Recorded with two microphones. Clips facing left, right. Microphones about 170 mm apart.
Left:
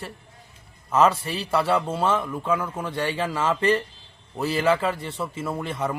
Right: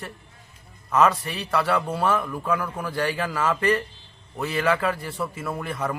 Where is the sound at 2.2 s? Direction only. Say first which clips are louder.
Left 1 dB; centre (ahead or behind).